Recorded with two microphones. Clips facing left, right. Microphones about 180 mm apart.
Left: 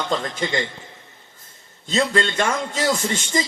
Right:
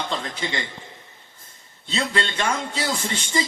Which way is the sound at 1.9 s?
45° left (ahead or behind).